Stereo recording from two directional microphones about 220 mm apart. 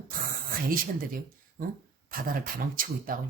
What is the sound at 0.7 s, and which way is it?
A woman's voice, 40° right (ahead or behind).